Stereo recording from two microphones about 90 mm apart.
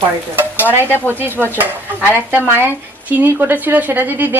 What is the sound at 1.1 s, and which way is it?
Speech, 25° right (ahead or behind).